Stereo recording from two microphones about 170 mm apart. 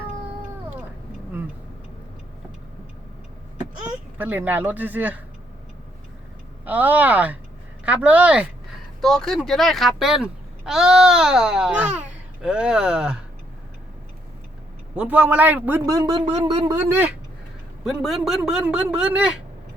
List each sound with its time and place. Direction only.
4.2 s speech: 10° right (ahead or behind)
6.7 s speech: 10° right (ahead or behind)
14.9 s speech: 10° right (ahead or behind)
15.9 s speech: 20° right (ahead or behind)